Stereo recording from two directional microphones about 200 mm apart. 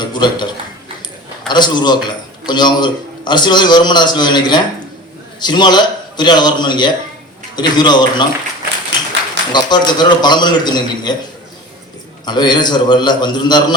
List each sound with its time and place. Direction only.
0.0 s a man's voice: 20° left (ahead or behind)
1.5 s a man's voice: 20° left (ahead or behind)
9.5 s a man's voice: 20° left (ahead or behind)
12.2 s a man's voice: 20° left (ahead or behind)